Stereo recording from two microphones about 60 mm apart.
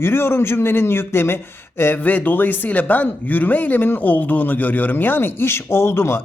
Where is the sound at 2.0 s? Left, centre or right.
Left.